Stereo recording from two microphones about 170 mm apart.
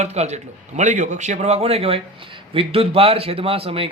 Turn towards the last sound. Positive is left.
turn(degrees=-35)  # may be behind; listen again after turning